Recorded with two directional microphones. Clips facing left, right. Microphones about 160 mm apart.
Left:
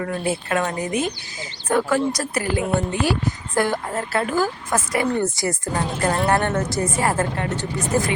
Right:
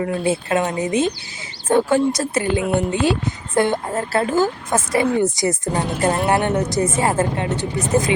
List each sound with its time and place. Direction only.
0.0 s speech: 25° right (ahead or behind)